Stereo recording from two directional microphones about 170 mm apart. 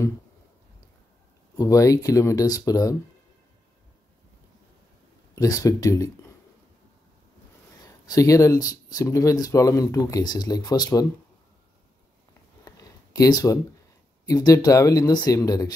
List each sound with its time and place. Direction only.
1.6 s speech: 20° left (ahead or behind)
5.3 s speech: 20° left (ahead or behind)
7.8 s speech: 20° left (ahead or behind)
12.6 s a sound: 20° left (ahead or behind)
14.2 s speech: 20° left (ahead or behind)